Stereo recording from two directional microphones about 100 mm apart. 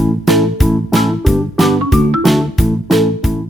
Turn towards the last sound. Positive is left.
turn(degrees=0)  # may be behind; listen again after turning